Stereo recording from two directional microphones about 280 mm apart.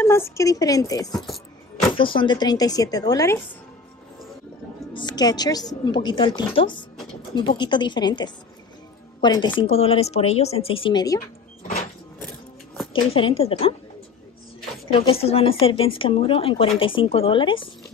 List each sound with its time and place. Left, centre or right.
0.0 s speech: centre
4.9 s a woman's voice: centre
12.9 s a woman's voice: centre
14.9 s a woman's voice: centre